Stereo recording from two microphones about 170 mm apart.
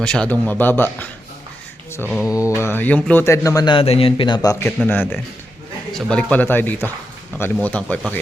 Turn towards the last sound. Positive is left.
turn(degrees=10)  # may be behind; listen again after turning